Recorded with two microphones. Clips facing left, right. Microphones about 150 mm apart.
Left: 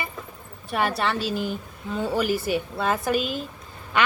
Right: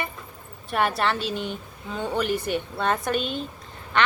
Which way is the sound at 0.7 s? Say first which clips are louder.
Right 1 dB; centre (ahead or behind).